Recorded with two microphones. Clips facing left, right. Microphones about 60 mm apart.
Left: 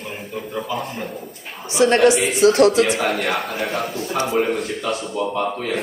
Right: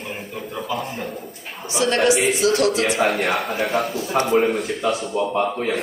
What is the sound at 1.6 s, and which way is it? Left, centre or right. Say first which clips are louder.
Speech: left 4 dB; left.